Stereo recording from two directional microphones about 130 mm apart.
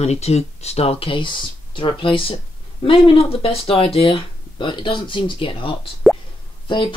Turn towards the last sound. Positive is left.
turn(degrees=40)  # may be behind; listen again after turning